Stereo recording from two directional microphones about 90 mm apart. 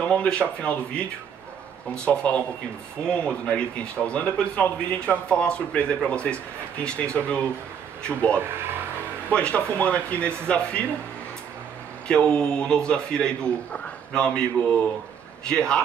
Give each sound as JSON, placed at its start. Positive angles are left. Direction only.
{"t": 0.1, "sound": "speech", "side_deg": 10}
{"t": 2.0, "sound": "speech", "side_deg": 15}
{"t": 8.4, "sound": "speech", "side_deg": -25}
{"t": 9.3, "sound": "speech", "side_deg": 10}
{"t": 12.1, "sound": "speech", "side_deg": 10}
{"t": 15.4, "sound": "speech", "side_deg": 10}